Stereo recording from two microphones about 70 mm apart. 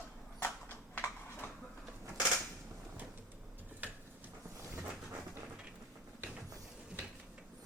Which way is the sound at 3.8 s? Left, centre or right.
Right.